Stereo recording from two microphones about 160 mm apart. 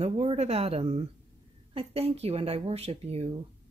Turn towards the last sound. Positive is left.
turn(degrees=-40)  # may be behind; listen again after turning